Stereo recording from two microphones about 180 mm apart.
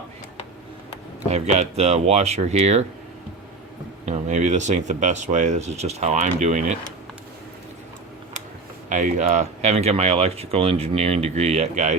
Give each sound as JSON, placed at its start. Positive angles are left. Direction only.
{"t": 1.3, "sound": "speech", "side_deg": -40}
{"t": 4.0, "sound": "speech", "side_deg": -40}
{"t": 8.9, "sound": "speech", "side_deg": -45}